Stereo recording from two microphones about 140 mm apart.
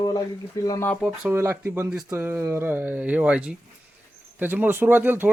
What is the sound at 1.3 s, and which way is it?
Speech, 20° right (ahead or behind).